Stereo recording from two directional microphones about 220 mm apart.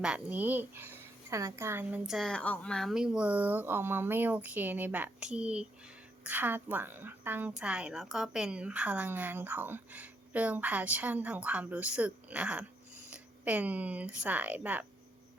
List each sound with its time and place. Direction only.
0.0 s a woman's voice: 5° right (ahead or behind)